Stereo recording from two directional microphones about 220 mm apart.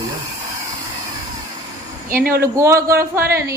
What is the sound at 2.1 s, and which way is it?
Speech, 40° right (ahead or behind).